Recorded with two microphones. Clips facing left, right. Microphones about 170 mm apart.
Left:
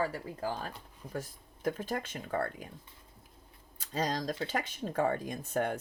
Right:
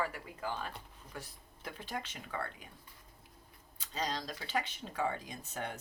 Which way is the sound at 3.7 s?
50° left (ahead or behind).